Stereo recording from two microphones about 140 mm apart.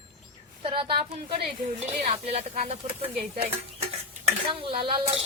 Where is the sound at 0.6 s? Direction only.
40° right (ahead or behind).